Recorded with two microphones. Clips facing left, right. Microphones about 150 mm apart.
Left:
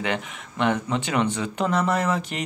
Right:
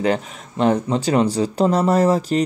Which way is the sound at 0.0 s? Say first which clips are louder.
Right 7 dB; 35° right (ahead or behind).